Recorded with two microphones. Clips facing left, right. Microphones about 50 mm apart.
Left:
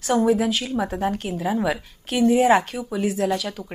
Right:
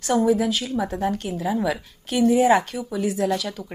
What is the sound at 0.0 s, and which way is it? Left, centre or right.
Speech, centre.